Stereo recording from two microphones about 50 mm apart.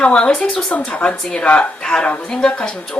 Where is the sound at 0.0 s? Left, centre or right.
Centre.